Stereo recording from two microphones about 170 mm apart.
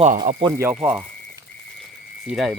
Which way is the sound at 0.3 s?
25° right (ahead or behind).